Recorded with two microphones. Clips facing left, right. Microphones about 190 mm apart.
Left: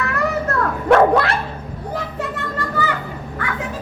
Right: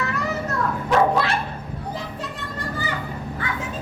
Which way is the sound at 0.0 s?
60° left (ahead or behind).